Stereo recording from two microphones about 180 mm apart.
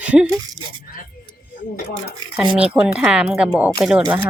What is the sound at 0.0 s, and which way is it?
Speech, 5° right (ahead or behind).